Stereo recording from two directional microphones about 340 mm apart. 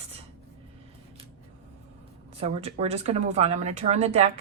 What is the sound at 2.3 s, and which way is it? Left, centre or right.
A woman's voice, centre.